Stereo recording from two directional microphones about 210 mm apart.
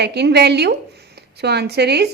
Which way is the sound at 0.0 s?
50° right (ahead or behind).